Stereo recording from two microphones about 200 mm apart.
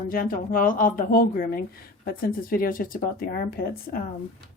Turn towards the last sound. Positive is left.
turn(degrees=50)  # may be behind; listen again after turning